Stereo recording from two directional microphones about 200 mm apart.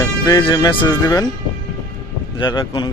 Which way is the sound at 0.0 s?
20° left (ahead or behind).